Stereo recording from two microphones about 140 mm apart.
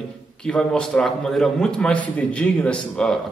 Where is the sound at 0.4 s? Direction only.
5° left (ahead or behind).